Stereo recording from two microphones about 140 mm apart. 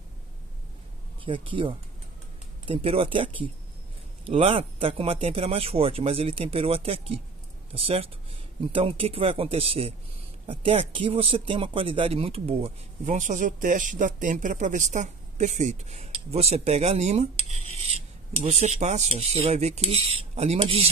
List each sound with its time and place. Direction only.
1.2 s speech: 40° right (ahead or behind)